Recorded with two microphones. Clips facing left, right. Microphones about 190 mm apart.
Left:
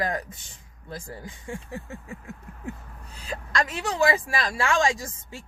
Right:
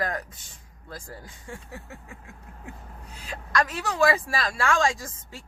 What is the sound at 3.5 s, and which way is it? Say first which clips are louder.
A man's voice: right 1 dB; 20° left (ahead or behind).